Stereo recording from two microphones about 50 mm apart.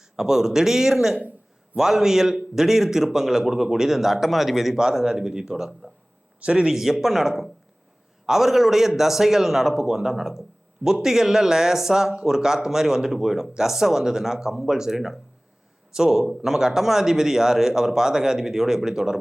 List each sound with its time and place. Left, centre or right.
0.0 s a man's voice: centre
6.4 s speech: right
6.7 s a man's voice: centre